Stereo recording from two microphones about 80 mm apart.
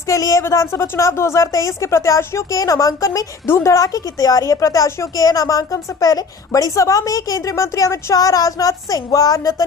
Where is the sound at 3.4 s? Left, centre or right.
Left.